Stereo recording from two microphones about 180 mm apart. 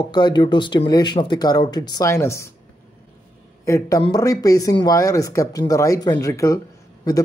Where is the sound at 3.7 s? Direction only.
20° left (ahead or behind).